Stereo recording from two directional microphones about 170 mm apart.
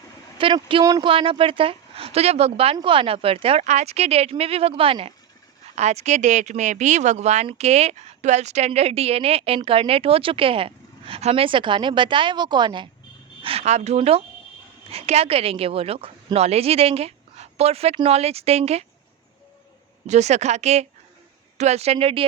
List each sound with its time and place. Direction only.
0.3 s a woman's voice: 30° right (ahead or behind)
20.1 s a woman's voice: 40° right (ahead or behind)